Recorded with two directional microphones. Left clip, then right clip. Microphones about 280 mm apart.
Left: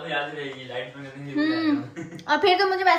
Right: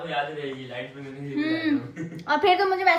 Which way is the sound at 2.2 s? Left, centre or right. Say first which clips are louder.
Left 1 dB; centre.